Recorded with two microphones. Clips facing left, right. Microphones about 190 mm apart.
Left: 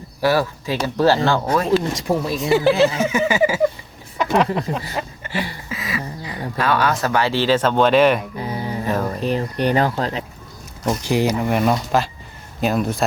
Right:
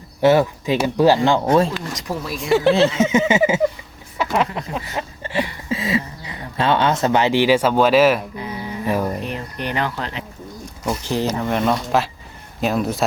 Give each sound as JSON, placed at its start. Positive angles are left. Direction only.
{"t": 0.2, "sound": "speech", "side_deg": -20}
{"t": 1.7, "sound": "speech", "side_deg": 25}
{"t": 2.3, "sound": "speech", "side_deg": 0}
{"t": 2.9, "sound": "a sound", "side_deg": -25}
{"t": 4.7, "sound": "speech", "side_deg": 40}
{"t": 5.2, "sound": "a sound", "side_deg": -30}
{"t": 5.6, "sound": "speech", "side_deg": -25}
{"t": 8.4, "sound": "music", "side_deg": 35}
{"t": 8.9, "sound": "speech", "side_deg": -10}
{"t": 9.2, "sound": "speech", "side_deg": 35}
{"t": 11.0, "sound": "speech", "side_deg": 10}